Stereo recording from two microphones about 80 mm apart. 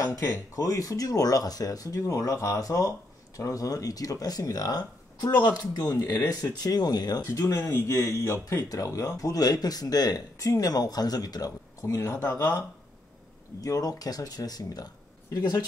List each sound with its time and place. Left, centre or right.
0.0 s speech: left
5.9 s speech: left
6.6 s speech: left
7.2 s speech: left
7.7 s speech: left
11.8 s speech: left
13.6 s speech: left